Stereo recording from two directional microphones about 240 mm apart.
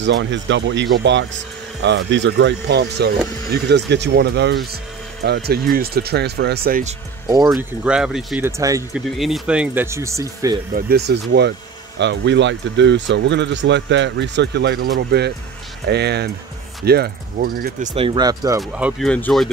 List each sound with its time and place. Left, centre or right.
0.0 s speech: right
7.2 s speech: centre
7.5 s speech: centre
8.5 s speech: centre
9.2 s speech: centre
10.7 s speech: right
17.8 s speech: centre